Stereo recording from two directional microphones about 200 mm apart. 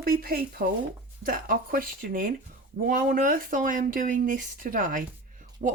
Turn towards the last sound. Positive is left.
turn(degrees=-35)  # may be behind; listen again after turning